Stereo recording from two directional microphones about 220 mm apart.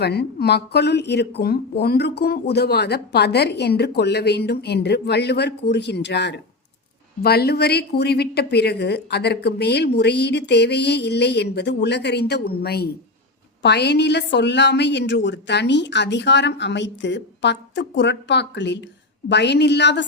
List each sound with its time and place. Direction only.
0.0 s speech: 45° left (ahead or behind)